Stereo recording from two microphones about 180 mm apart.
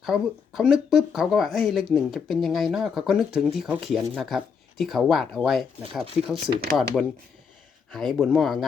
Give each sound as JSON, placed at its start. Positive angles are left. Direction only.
{"t": 0.0, "sound": "speech", "side_deg": -5}